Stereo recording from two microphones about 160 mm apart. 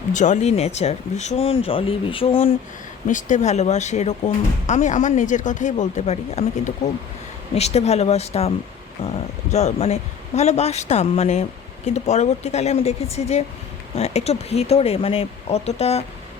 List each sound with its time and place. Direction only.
0.1 s speech: 50° left (ahead or behind); by 2.5 s 35° left (ahead or behind)
3.1 s speech: 50° left (ahead or behind)